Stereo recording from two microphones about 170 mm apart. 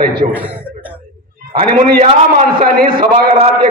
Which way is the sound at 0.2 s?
45° right (ahead or behind).